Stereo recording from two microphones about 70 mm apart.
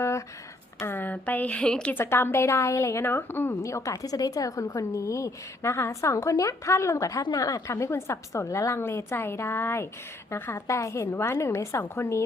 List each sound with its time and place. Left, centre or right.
0.9 s speech: left
1.9 s a woman's voice: left
3.6 s a woman's voice: left
7.2 s a woman's voice: left
10.7 s a woman's voice: left